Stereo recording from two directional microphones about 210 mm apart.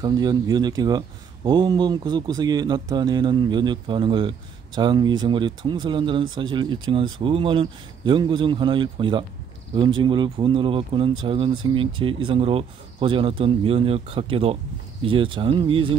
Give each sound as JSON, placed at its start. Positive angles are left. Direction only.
{"t": 0.0, "sound": "speech", "side_deg": -20}